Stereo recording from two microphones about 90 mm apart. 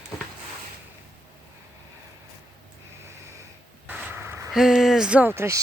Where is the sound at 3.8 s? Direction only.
25° right (ahead or behind).